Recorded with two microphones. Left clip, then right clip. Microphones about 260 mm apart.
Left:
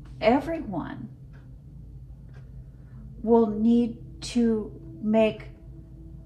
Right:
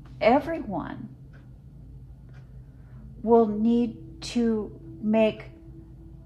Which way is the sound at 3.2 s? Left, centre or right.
Right.